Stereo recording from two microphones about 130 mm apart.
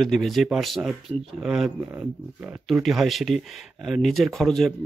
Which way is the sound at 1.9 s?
15° right (ahead or behind).